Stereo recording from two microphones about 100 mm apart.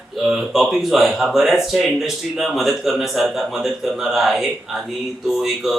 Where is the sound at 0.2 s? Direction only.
Centre (ahead or behind).